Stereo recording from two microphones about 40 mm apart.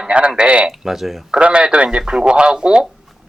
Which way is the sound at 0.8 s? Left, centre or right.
Centre.